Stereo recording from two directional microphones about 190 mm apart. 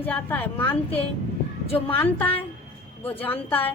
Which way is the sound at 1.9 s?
10° left (ahead or behind).